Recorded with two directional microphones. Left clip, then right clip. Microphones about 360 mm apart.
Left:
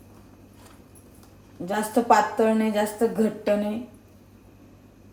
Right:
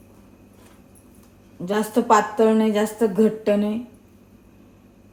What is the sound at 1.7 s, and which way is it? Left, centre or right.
A woman's voice, centre.